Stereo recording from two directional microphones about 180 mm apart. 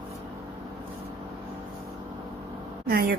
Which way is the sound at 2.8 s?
55° right (ahead or behind).